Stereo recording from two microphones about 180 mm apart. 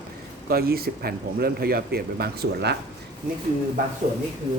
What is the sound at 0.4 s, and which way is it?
Speech, 55° right (ahead or behind).